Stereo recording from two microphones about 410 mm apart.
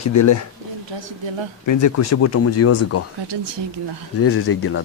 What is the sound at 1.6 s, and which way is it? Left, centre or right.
Speech, left.